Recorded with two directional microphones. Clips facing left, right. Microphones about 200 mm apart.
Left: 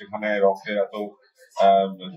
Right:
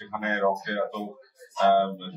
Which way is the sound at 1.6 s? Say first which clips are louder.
Left 4 dB; 25° left (ahead or behind).